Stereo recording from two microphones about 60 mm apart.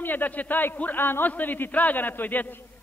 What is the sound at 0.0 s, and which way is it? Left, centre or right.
A man's voice, left.